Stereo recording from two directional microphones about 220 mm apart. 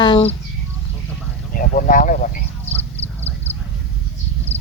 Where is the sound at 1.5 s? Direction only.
40° left (ahead or behind).